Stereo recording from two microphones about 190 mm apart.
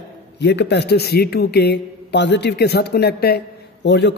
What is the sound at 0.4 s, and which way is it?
A man's voice, 65° left (ahead or behind).